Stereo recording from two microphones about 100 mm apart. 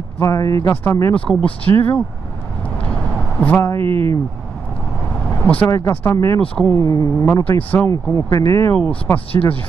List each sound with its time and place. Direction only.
0.2 s speech: 30° left (ahead or behind)
1.1 s speech: 15° left (ahead or behind)
3.3 s speech: 15° left (ahead or behind)
3.8 s speech: 65° right (ahead or behind)
5.2 s vehicle: 10° left (ahead or behind)
5.7 s speech: 25° left (ahead or behind)
6.4 s speech: 15° left (ahead or behind)
7.9 s speech: 35° left (ahead or behind)
8.7 s speech: 15° left (ahead or behind)
9.3 s speech: 70° left (ahead or behind)